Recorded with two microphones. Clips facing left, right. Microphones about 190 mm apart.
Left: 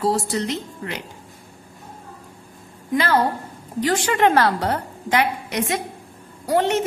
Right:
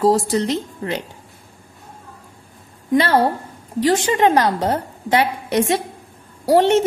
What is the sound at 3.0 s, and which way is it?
A woman's voice, 30° right (ahead or behind).